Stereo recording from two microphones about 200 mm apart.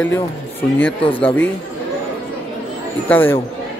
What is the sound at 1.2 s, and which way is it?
Speech, 10° left (ahead or behind).